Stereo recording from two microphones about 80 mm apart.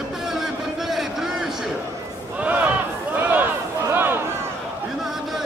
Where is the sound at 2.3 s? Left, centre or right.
Centre.